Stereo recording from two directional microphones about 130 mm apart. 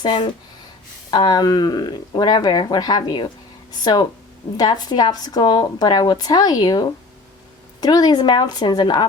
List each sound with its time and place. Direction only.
0.0 s speech: 35° left (ahead or behind)